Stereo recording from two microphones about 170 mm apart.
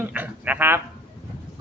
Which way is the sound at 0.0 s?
10° right (ahead or behind).